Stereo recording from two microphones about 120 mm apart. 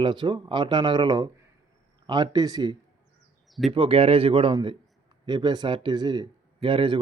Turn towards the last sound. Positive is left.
turn(degrees=-45)  # may be behind; listen again after turning